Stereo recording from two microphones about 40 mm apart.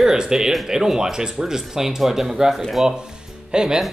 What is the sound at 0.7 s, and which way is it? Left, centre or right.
Speech, centre.